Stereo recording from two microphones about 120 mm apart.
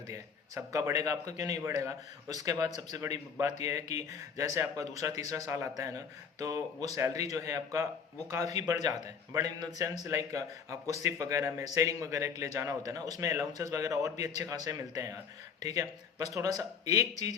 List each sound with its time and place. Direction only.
0.1 s speech: 25° right (ahead or behind)